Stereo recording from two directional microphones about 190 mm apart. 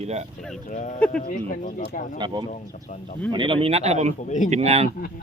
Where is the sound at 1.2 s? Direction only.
45° left (ahead or behind).